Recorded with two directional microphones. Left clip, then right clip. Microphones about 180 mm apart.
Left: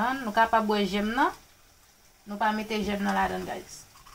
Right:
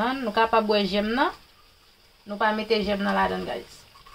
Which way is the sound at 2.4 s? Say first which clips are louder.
Right 4 dB; 25° right (ahead or behind).